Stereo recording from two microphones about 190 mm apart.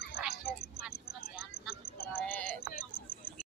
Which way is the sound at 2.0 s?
10° left (ahead or behind).